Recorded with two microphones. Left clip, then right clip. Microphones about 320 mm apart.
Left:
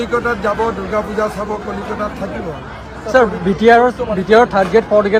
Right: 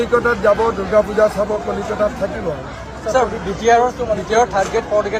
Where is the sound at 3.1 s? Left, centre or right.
Left.